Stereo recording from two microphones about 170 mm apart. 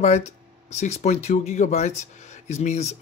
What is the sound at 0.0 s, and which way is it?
Speech, 40° left (ahead or behind).